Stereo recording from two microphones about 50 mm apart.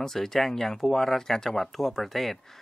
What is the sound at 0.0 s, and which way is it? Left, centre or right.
Speech, centre.